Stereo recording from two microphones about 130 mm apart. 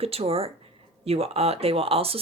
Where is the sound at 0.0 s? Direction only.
50° right (ahead or behind).